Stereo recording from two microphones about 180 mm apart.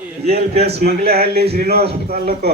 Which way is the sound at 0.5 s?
35° right (ahead or behind).